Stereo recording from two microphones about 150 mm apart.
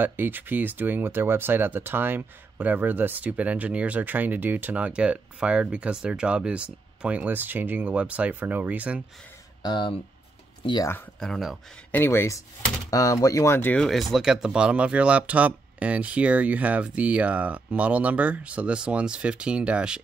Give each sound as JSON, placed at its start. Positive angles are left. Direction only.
{"t": 0.0, "sound": "speech", "side_deg": -15}
{"t": 9.6, "sound": "speech", "side_deg": 30}
{"t": 11.1, "sound": "speech", "side_deg": 0}
{"t": 11.9, "sound": "speech", "side_deg": 15}
{"t": 13.8, "sound": "speech", "side_deg": 0}